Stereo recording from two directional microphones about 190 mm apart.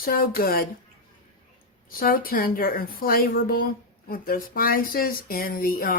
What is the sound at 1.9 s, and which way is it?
Speech, 50° left (ahead or behind).